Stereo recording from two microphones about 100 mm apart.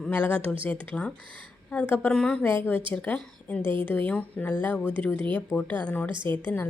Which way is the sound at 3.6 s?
55° right (ahead or behind).